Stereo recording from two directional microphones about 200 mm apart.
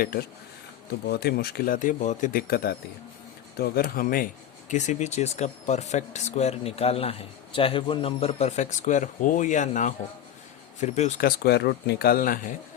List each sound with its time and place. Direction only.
0.0 s speech: 50° left (ahead or behind)